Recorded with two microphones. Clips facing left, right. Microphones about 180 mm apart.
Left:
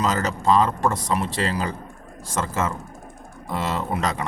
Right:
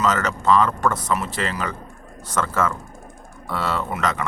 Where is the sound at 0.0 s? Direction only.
30° left (ahead or behind).